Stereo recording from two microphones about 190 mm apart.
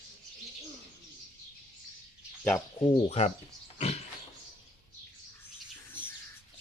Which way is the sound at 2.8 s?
25° left (ahead or behind).